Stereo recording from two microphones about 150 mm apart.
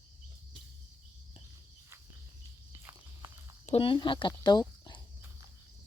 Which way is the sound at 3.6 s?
40° left (ahead or behind).